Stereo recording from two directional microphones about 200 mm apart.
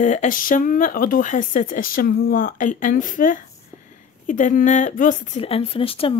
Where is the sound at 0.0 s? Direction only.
40° left (ahead or behind).